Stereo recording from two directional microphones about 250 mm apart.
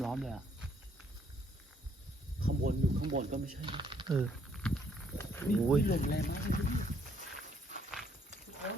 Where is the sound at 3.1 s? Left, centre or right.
Right.